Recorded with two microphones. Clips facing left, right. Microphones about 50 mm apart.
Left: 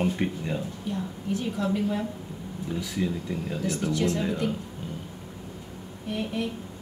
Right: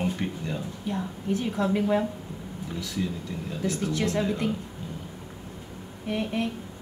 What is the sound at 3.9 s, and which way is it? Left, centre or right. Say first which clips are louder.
Speech: left 4 dB; right.